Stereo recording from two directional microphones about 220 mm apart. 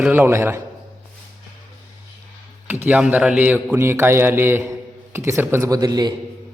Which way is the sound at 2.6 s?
10° right (ahead or behind).